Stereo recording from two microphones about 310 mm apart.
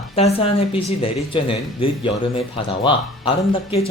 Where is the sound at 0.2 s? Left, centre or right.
Centre.